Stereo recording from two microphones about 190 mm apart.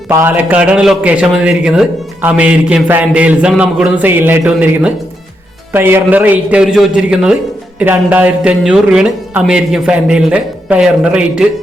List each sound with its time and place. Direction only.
0.1 s a man's voice: 10° right (ahead or behind)